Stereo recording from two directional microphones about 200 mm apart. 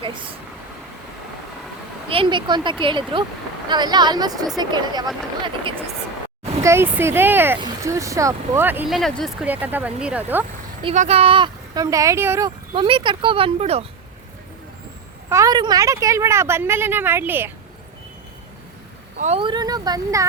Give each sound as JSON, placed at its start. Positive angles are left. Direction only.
{"t": 2.0, "sound": "speech", "side_deg": -25}
{"t": 6.6, "sound": "speech", "side_deg": -15}
{"t": 10.8, "sound": "speech", "side_deg": -35}
{"t": 12.7, "sound": "speech", "side_deg": -25}
{"t": 15.3, "sound": "speech", "side_deg": -15}
{"t": 19.1, "sound": "speech", "side_deg": -35}
{"t": 19.4, "sound": "speech", "side_deg": -20}